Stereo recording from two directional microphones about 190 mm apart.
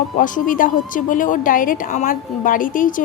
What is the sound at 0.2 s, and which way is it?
A woman's voice, 45° left (ahead or behind).